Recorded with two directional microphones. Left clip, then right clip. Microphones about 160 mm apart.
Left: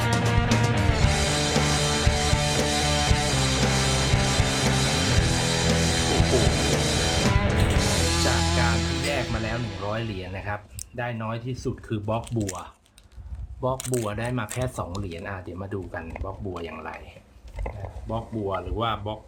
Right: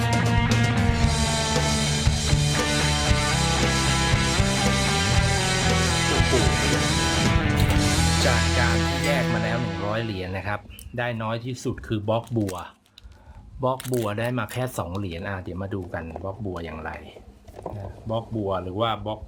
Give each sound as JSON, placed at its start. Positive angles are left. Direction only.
{"t": 0.0, "sound": "music", "side_deg": 0}
{"t": 10.2, "sound": "speech", "side_deg": -40}
{"t": 13.7, "sound": "speech", "side_deg": -10}
{"t": 14.0, "sound": "speech", "side_deg": -35}
{"t": 18.1, "sound": "speech", "side_deg": -30}